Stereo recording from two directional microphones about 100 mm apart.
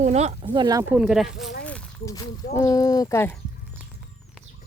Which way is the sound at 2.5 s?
35° left (ahead or behind).